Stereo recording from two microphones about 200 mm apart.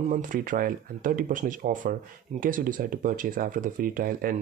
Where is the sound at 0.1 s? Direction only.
40° right (ahead or behind).